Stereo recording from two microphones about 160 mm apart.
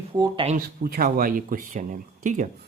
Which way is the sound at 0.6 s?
65° right (ahead or behind).